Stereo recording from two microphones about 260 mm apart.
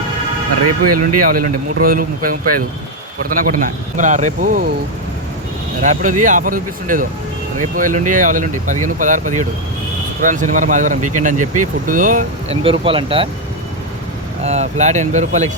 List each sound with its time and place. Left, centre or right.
0.9 s speech: right
1.2 s speech: right
5.8 s speech: right
14.4 s speech: right